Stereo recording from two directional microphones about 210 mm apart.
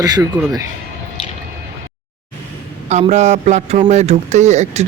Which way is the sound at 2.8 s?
30° right (ahead or behind).